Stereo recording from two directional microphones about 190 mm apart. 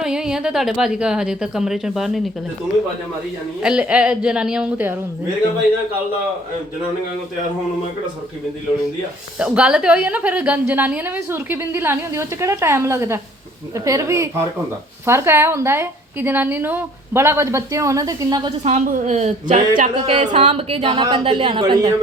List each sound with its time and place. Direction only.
0.0 s a woman's voice: 5° right (ahead or behind)
3.6 s a woman's voice: 5° right (ahead or behind)
9.4 s a woman's voice: 5° right (ahead or behind); by 18.5 s 20° right (ahead or behind)
18.6 s a woman's voice: 40° right (ahead or behind); by 21.9 s 20° right (ahead or behind)